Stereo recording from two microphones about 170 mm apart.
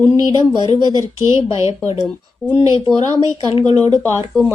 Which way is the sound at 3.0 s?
20° right (ahead or behind).